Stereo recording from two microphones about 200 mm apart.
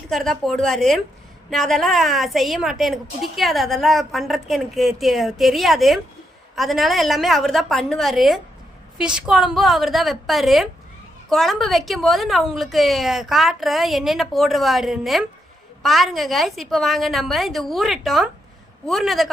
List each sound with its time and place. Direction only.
0.1 s a woman's voice: centre (ahead or behind)